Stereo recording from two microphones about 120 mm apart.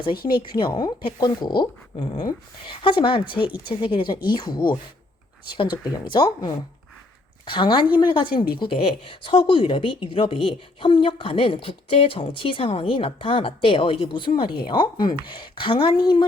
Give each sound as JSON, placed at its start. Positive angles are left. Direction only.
{"t": 0.0, "sound": "speech", "side_deg": 40}
{"t": 6.1, "sound": "a woman's voice", "side_deg": 35}